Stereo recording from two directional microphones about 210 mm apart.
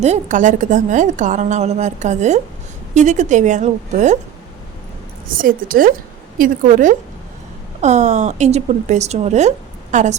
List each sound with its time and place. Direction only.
0.0 s a woman's voice: 35° right (ahead or behind)
5.3 s a woman's voice: 40° right (ahead or behind)